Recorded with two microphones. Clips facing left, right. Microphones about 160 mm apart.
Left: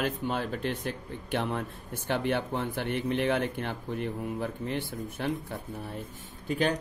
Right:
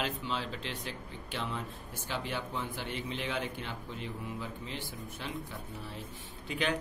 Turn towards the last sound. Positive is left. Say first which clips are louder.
# left 5 dB
turn(degrees=40)  # may be behind; listen again after turning